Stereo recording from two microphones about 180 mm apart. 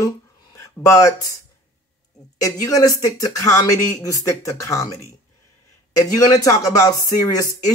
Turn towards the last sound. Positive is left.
turn(degrees=20)  # may be behind; listen again after turning